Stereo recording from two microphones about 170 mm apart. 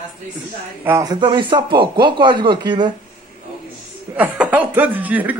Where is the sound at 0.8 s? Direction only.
20° right (ahead or behind).